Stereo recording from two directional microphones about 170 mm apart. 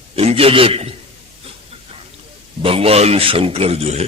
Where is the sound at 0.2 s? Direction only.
35° right (ahead or behind).